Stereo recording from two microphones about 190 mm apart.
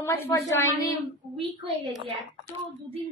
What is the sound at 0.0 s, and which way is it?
Speech, 15° left (ahead or behind).